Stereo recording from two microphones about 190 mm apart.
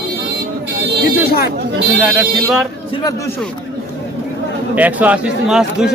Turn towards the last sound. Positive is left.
turn(degrees=-5)  # may be behind; listen again after turning